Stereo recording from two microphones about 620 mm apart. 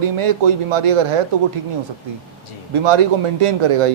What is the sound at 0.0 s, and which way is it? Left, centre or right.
Speech, right.